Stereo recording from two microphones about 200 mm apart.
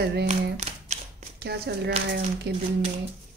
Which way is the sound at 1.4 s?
55° right (ahead or behind).